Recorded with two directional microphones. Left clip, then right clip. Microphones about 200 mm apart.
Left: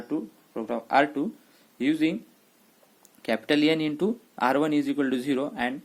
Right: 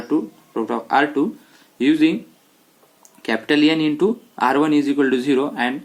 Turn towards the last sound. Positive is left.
turn(degrees=35)  # may be behind; listen again after turning